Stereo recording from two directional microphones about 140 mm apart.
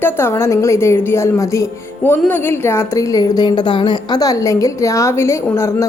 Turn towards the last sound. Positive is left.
turn(degrees=20)  # may be behind; listen again after turning